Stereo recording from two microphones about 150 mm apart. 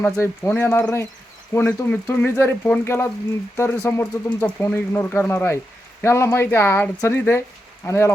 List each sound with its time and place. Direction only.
0.0 s speech: 15° left (ahead or behind)